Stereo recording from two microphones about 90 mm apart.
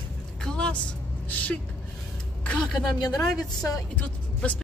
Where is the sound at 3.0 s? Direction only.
45° left (ahead or behind).